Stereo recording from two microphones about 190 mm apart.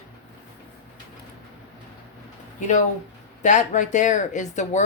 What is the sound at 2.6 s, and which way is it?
Speech, 40° left (ahead or behind).